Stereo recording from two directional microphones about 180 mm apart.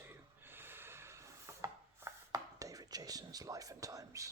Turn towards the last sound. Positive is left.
turn(degrees=-20)  # may be behind; listen again after turning